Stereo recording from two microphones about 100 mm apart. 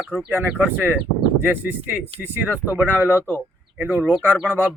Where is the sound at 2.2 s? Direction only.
15° right (ahead or behind).